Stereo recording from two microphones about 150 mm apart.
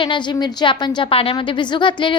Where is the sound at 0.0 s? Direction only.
30° left (ahead or behind).